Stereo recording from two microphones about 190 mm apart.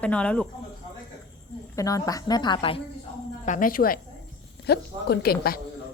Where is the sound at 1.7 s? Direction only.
20° left (ahead or behind).